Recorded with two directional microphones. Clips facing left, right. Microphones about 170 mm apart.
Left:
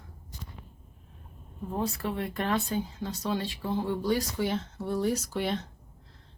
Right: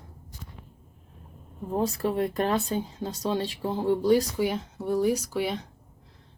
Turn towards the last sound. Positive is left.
turn(degrees=-5)  # may be behind; listen again after turning